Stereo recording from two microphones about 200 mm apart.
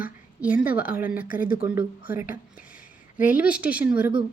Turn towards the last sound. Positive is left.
turn(degrees=-10)  # may be behind; listen again after turning